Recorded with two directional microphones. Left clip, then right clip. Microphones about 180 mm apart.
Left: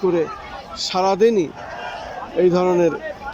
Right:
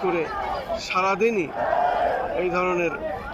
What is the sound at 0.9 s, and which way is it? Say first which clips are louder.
Speech: left 6 dB; 25° left (ahead or behind).